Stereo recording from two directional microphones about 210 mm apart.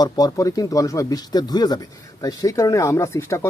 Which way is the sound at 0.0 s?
15° left (ahead or behind).